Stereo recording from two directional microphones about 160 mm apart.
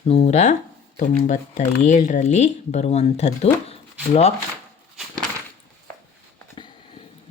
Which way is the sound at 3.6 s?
40° left (ahead or behind).